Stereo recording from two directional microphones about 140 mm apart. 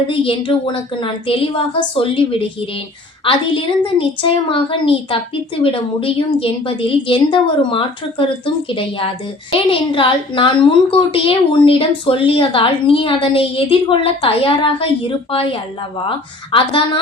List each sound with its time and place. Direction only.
0.1 s a woman's voice: 40° left (ahead or behind)